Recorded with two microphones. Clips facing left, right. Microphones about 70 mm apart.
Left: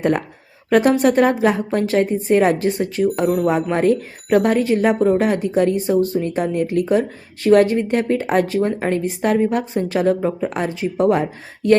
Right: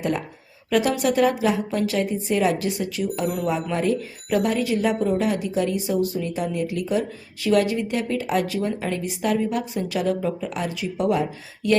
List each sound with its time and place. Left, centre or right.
0.0 s speech: left